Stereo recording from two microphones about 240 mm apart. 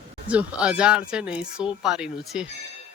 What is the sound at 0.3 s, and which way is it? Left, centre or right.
A woman's voice, centre.